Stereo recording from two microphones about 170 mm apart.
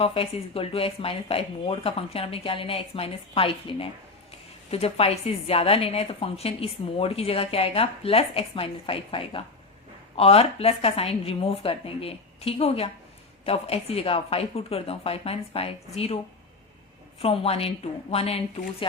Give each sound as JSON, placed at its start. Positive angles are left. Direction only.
{"t": 0.0, "sound": "a woman's voice", "side_deg": 35}
{"t": 17.2, "sound": "a woman's voice", "side_deg": 35}